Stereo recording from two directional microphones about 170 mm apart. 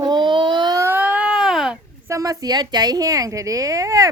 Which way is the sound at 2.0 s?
20° right (ahead or behind).